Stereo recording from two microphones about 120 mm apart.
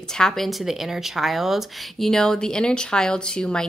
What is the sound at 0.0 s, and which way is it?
Speech, 5° left (ahead or behind).